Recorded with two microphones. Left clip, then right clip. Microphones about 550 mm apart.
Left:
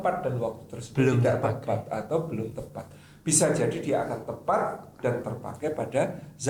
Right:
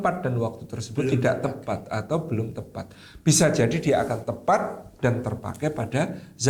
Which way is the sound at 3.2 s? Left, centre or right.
Right.